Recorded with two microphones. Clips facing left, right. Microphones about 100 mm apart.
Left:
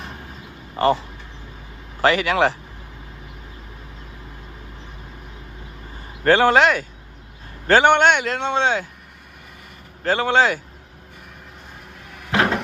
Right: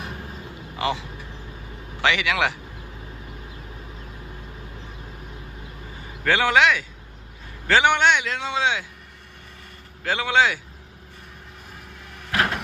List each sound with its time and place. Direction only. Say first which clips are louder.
0.8 s speech: left 8 dB; 40° left (ahead or behind)
6.2 s a man's voice: left 4 dB; 40° left (ahead or behind)
10.0 s speech: left 3 dB; 40° left (ahead or behind)
12.3 s cupboard open or close: left 4 dB; 30° left (ahead or behind)